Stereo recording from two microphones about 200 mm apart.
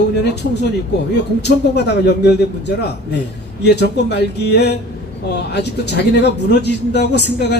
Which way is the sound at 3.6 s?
55° left (ahead or behind).